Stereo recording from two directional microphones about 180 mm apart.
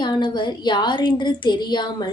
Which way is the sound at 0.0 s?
25° left (ahead or behind).